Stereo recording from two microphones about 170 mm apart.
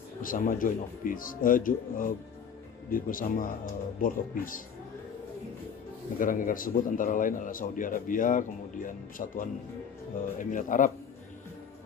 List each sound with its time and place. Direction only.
0.2 s a man's voice: 55° left (ahead or behind)
6.1 s a man's voice: 55° left (ahead or behind)